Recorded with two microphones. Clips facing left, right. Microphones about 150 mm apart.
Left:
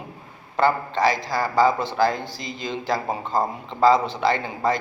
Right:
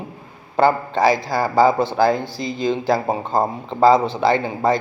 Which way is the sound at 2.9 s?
30° right (ahead or behind).